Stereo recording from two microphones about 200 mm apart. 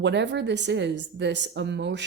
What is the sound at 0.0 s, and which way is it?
A woman's voice, 60° right (ahead or behind).